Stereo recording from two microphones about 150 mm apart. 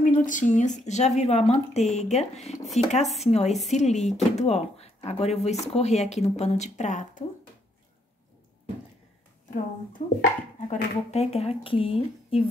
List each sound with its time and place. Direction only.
0.0 s speech: 60° left (ahead or behind)
9.5 s speech: 60° left (ahead or behind)
11.1 s speech: 45° left (ahead or behind)